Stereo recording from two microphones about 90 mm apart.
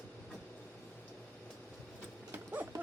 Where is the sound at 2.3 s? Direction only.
20° right (ahead or behind).